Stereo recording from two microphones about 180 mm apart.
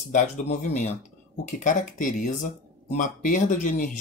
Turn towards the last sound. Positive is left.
turn(degrees=45)  # may be behind; listen again after turning